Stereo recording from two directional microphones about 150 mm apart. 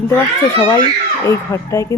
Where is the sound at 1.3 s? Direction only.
20° left (ahead or behind).